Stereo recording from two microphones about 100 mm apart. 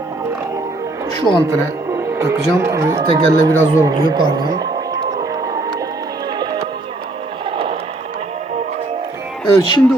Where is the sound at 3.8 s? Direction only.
45° right (ahead or behind).